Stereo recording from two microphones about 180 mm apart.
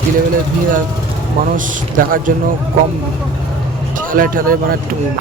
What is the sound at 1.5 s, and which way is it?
Speech, 45° right (ahead or behind).